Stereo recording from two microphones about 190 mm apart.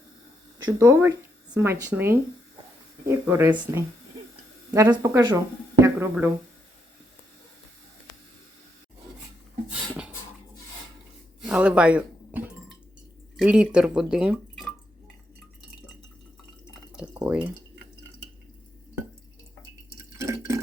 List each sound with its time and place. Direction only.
0.8 s speech: 15° right (ahead or behind)
11.4 s speech: 5° right (ahead or behind)
13.3 s drip: 5° right (ahead or behind)
16.9 s a sound: 5° right (ahead or behind)
20.0 s drip: 15° right (ahead or behind)